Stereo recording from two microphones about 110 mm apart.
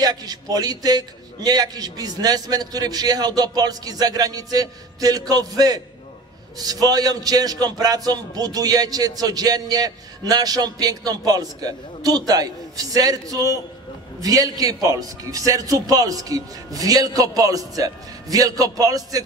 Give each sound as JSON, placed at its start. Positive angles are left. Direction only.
{"t": 0.0, "sound": "a man's voice", "side_deg": -35}